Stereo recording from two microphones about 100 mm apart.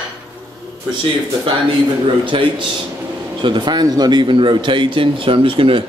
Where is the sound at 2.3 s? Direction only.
60° right (ahead or behind).